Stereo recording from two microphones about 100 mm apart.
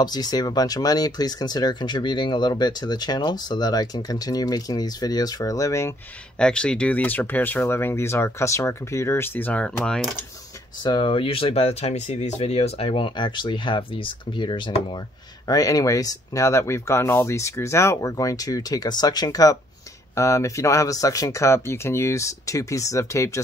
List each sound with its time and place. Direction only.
0.0 s speech: 45° left (ahead or behind)
6.3 s speech: 10° left (ahead or behind)
10.8 s speech: 50° left (ahead or behind)
15.4 s speech: 35° left (ahead or behind)